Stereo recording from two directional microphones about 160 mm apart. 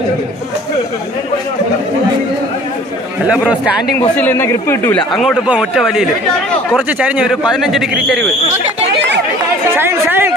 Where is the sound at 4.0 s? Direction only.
15° left (ahead or behind).